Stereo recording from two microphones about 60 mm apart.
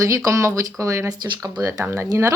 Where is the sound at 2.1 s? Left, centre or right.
Right.